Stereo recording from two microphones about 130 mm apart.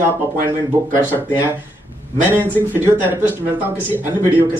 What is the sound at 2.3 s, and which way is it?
Speech, 15° right (ahead or behind).